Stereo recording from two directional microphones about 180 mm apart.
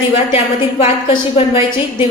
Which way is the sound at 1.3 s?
30° left (ahead or behind).